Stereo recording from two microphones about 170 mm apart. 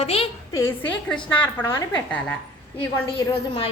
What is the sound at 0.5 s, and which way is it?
A woman's voice, 15° left (ahead or behind).